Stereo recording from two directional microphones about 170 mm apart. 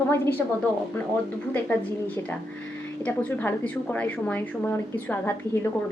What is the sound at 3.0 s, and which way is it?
A woman's voice, 10° left (ahead or behind).